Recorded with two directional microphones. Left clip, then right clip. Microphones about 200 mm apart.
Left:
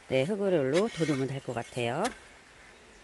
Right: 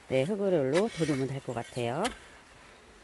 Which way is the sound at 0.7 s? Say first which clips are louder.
Even; 25° right (ahead or behind).